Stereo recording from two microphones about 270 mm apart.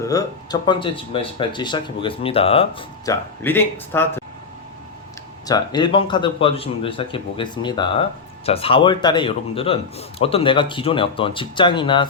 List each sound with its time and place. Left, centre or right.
0.0 s speech: centre
3.4 s speech: centre
5.5 s speech: centre